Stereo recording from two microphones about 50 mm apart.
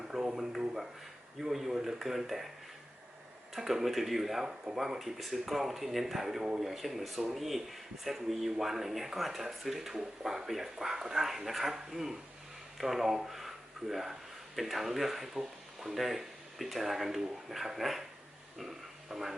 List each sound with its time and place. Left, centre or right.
0.1 s speech: centre
3.5 s speech: centre
4.4 s speech: centre
4.8 s speech: centre